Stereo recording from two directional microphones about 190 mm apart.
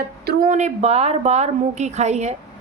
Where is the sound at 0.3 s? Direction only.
45° right (ahead or behind).